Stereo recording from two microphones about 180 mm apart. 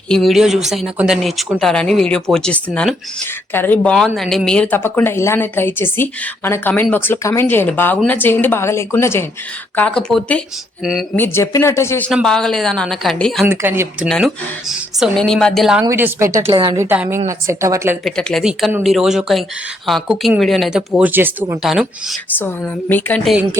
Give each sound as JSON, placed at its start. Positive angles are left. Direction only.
{"t": 0.1, "sound": "speech", "side_deg": 0}
{"t": 11.2, "sound": "speech", "side_deg": 15}
{"t": 13.5, "sound": "a woman's voice", "side_deg": -10}
{"t": 14.1, "sound": "speech", "side_deg": 0}
{"t": 15.8, "sound": "a woman's voice", "side_deg": -15}
{"t": 18.0, "sound": "speech", "side_deg": 5}
{"t": 22.4, "sound": "speech", "side_deg": 10}